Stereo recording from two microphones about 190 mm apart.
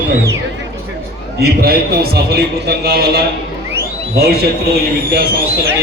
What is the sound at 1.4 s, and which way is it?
A man's voice, 55° right (ahead or behind).